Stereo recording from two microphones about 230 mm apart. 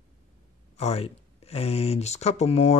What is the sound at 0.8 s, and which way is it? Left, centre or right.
Speech, left.